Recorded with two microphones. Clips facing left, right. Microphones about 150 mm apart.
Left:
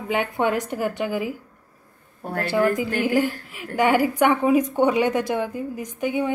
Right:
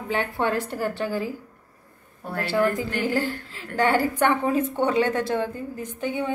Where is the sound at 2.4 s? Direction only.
15° left (ahead or behind).